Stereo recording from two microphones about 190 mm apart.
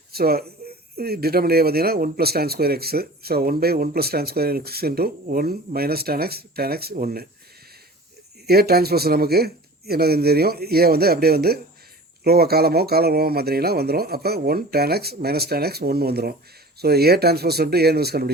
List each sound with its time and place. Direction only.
0.1 s speech: 55° right (ahead or behind)
8.4 s speech: 55° right (ahead or behind)